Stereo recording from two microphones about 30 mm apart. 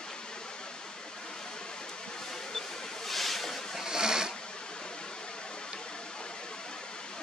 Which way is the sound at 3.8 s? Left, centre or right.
Right.